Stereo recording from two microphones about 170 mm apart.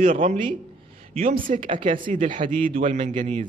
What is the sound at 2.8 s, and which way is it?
Speech, 45° right (ahead or behind).